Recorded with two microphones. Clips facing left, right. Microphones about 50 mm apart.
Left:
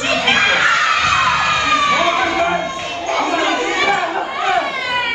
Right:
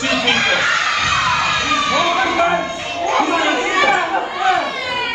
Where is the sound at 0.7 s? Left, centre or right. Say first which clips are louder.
Left 2 dB; centre.